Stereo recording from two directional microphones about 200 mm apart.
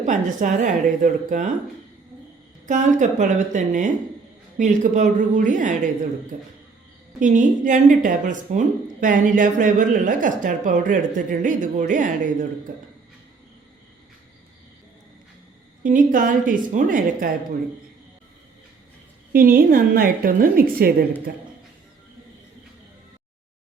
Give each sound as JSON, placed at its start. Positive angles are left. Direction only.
{"t": 0.0, "sound": "speech", "side_deg": -40}
{"t": 2.6, "sound": "speech", "side_deg": -40}
{"t": 15.8, "sound": "a woman's voice", "side_deg": -40}
{"t": 19.3, "sound": "a woman's voice", "side_deg": -45}